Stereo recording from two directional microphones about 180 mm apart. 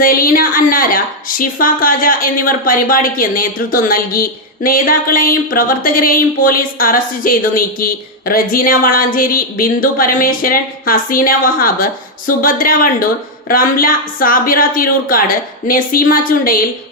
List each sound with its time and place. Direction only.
0.0 s a woman's voice: 50° left (ahead or behind)